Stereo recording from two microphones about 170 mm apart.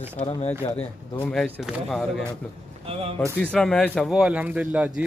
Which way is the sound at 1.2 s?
5° left (ahead or behind).